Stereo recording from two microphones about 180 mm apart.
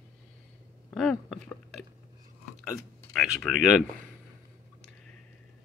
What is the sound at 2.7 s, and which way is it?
Speech, centre (ahead or behind).